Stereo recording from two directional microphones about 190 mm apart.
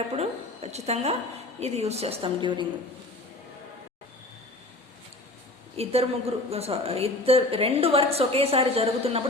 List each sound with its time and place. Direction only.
0.1 s a woman's voice: 35° right (ahead or behind)
5.7 s a woman's voice: 30° right (ahead or behind)